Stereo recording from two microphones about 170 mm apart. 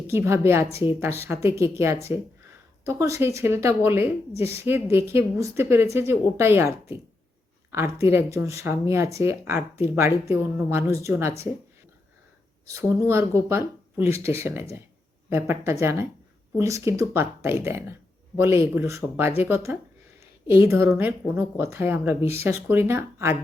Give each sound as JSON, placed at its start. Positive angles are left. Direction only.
{"t": 0.1, "sound": "a woman's voice", "side_deg": -15}
{"t": 0.7, "sound": "a woman's voice", "side_deg": 35}
{"t": 0.9, "sound": "a woman's voice", "side_deg": -15}
{"t": 12.6, "sound": "a woman's voice", "side_deg": -15}